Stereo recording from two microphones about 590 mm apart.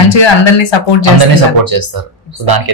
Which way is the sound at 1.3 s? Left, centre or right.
Right.